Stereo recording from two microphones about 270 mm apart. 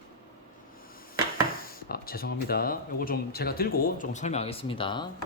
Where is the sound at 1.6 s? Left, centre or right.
Left; by 5.0 s centre.